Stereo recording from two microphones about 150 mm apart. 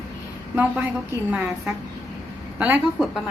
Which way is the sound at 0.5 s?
10° right (ahead or behind).